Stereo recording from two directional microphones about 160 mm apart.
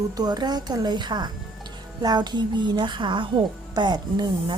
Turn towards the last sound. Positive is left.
turn(degrees=-25)  # may be behind; listen again after turning